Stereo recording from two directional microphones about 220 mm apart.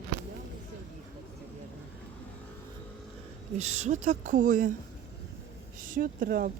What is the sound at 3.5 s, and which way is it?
Speech, 30° right (ahead or behind).